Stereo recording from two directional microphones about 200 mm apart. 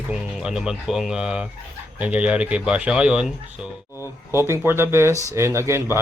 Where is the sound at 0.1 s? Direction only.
5° right (ahead or behind).